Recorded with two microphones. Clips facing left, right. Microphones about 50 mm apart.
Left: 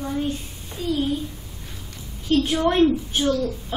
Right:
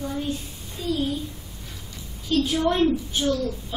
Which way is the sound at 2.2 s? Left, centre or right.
Left.